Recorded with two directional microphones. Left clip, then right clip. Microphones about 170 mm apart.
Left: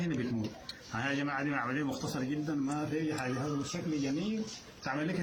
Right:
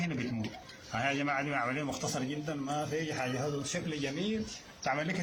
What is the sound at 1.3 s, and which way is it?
Speech, 50° right (ahead or behind).